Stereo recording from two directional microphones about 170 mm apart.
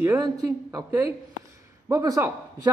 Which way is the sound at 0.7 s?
20° right (ahead or behind).